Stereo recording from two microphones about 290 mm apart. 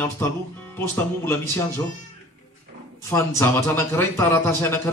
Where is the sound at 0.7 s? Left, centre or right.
Centre.